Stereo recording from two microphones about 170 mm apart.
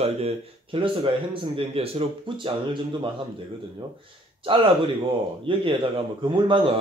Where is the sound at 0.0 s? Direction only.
35° right (ahead or behind).